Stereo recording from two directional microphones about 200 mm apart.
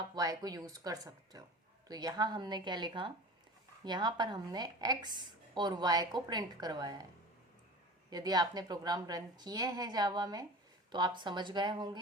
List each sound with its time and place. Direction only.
0.0 s a woman's voice: 20° right (ahead or behind)
8.1 s a woman's voice: 20° right (ahead or behind)